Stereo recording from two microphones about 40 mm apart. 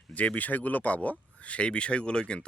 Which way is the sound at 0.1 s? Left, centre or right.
Left.